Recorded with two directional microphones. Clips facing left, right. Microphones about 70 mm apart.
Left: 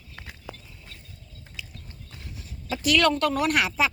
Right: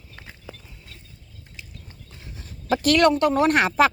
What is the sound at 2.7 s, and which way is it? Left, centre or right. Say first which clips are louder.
Speech: right 5 dB; right.